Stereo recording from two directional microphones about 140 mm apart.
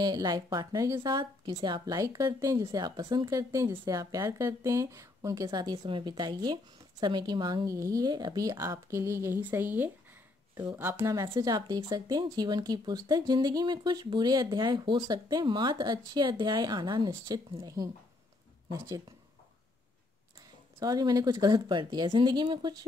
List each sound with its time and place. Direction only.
0.0 s speech: 30° right (ahead or behind)
20.8 s speech: 30° right (ahead or behind)